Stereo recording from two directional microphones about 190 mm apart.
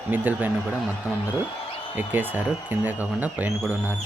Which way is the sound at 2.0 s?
10° right (ahead or behind).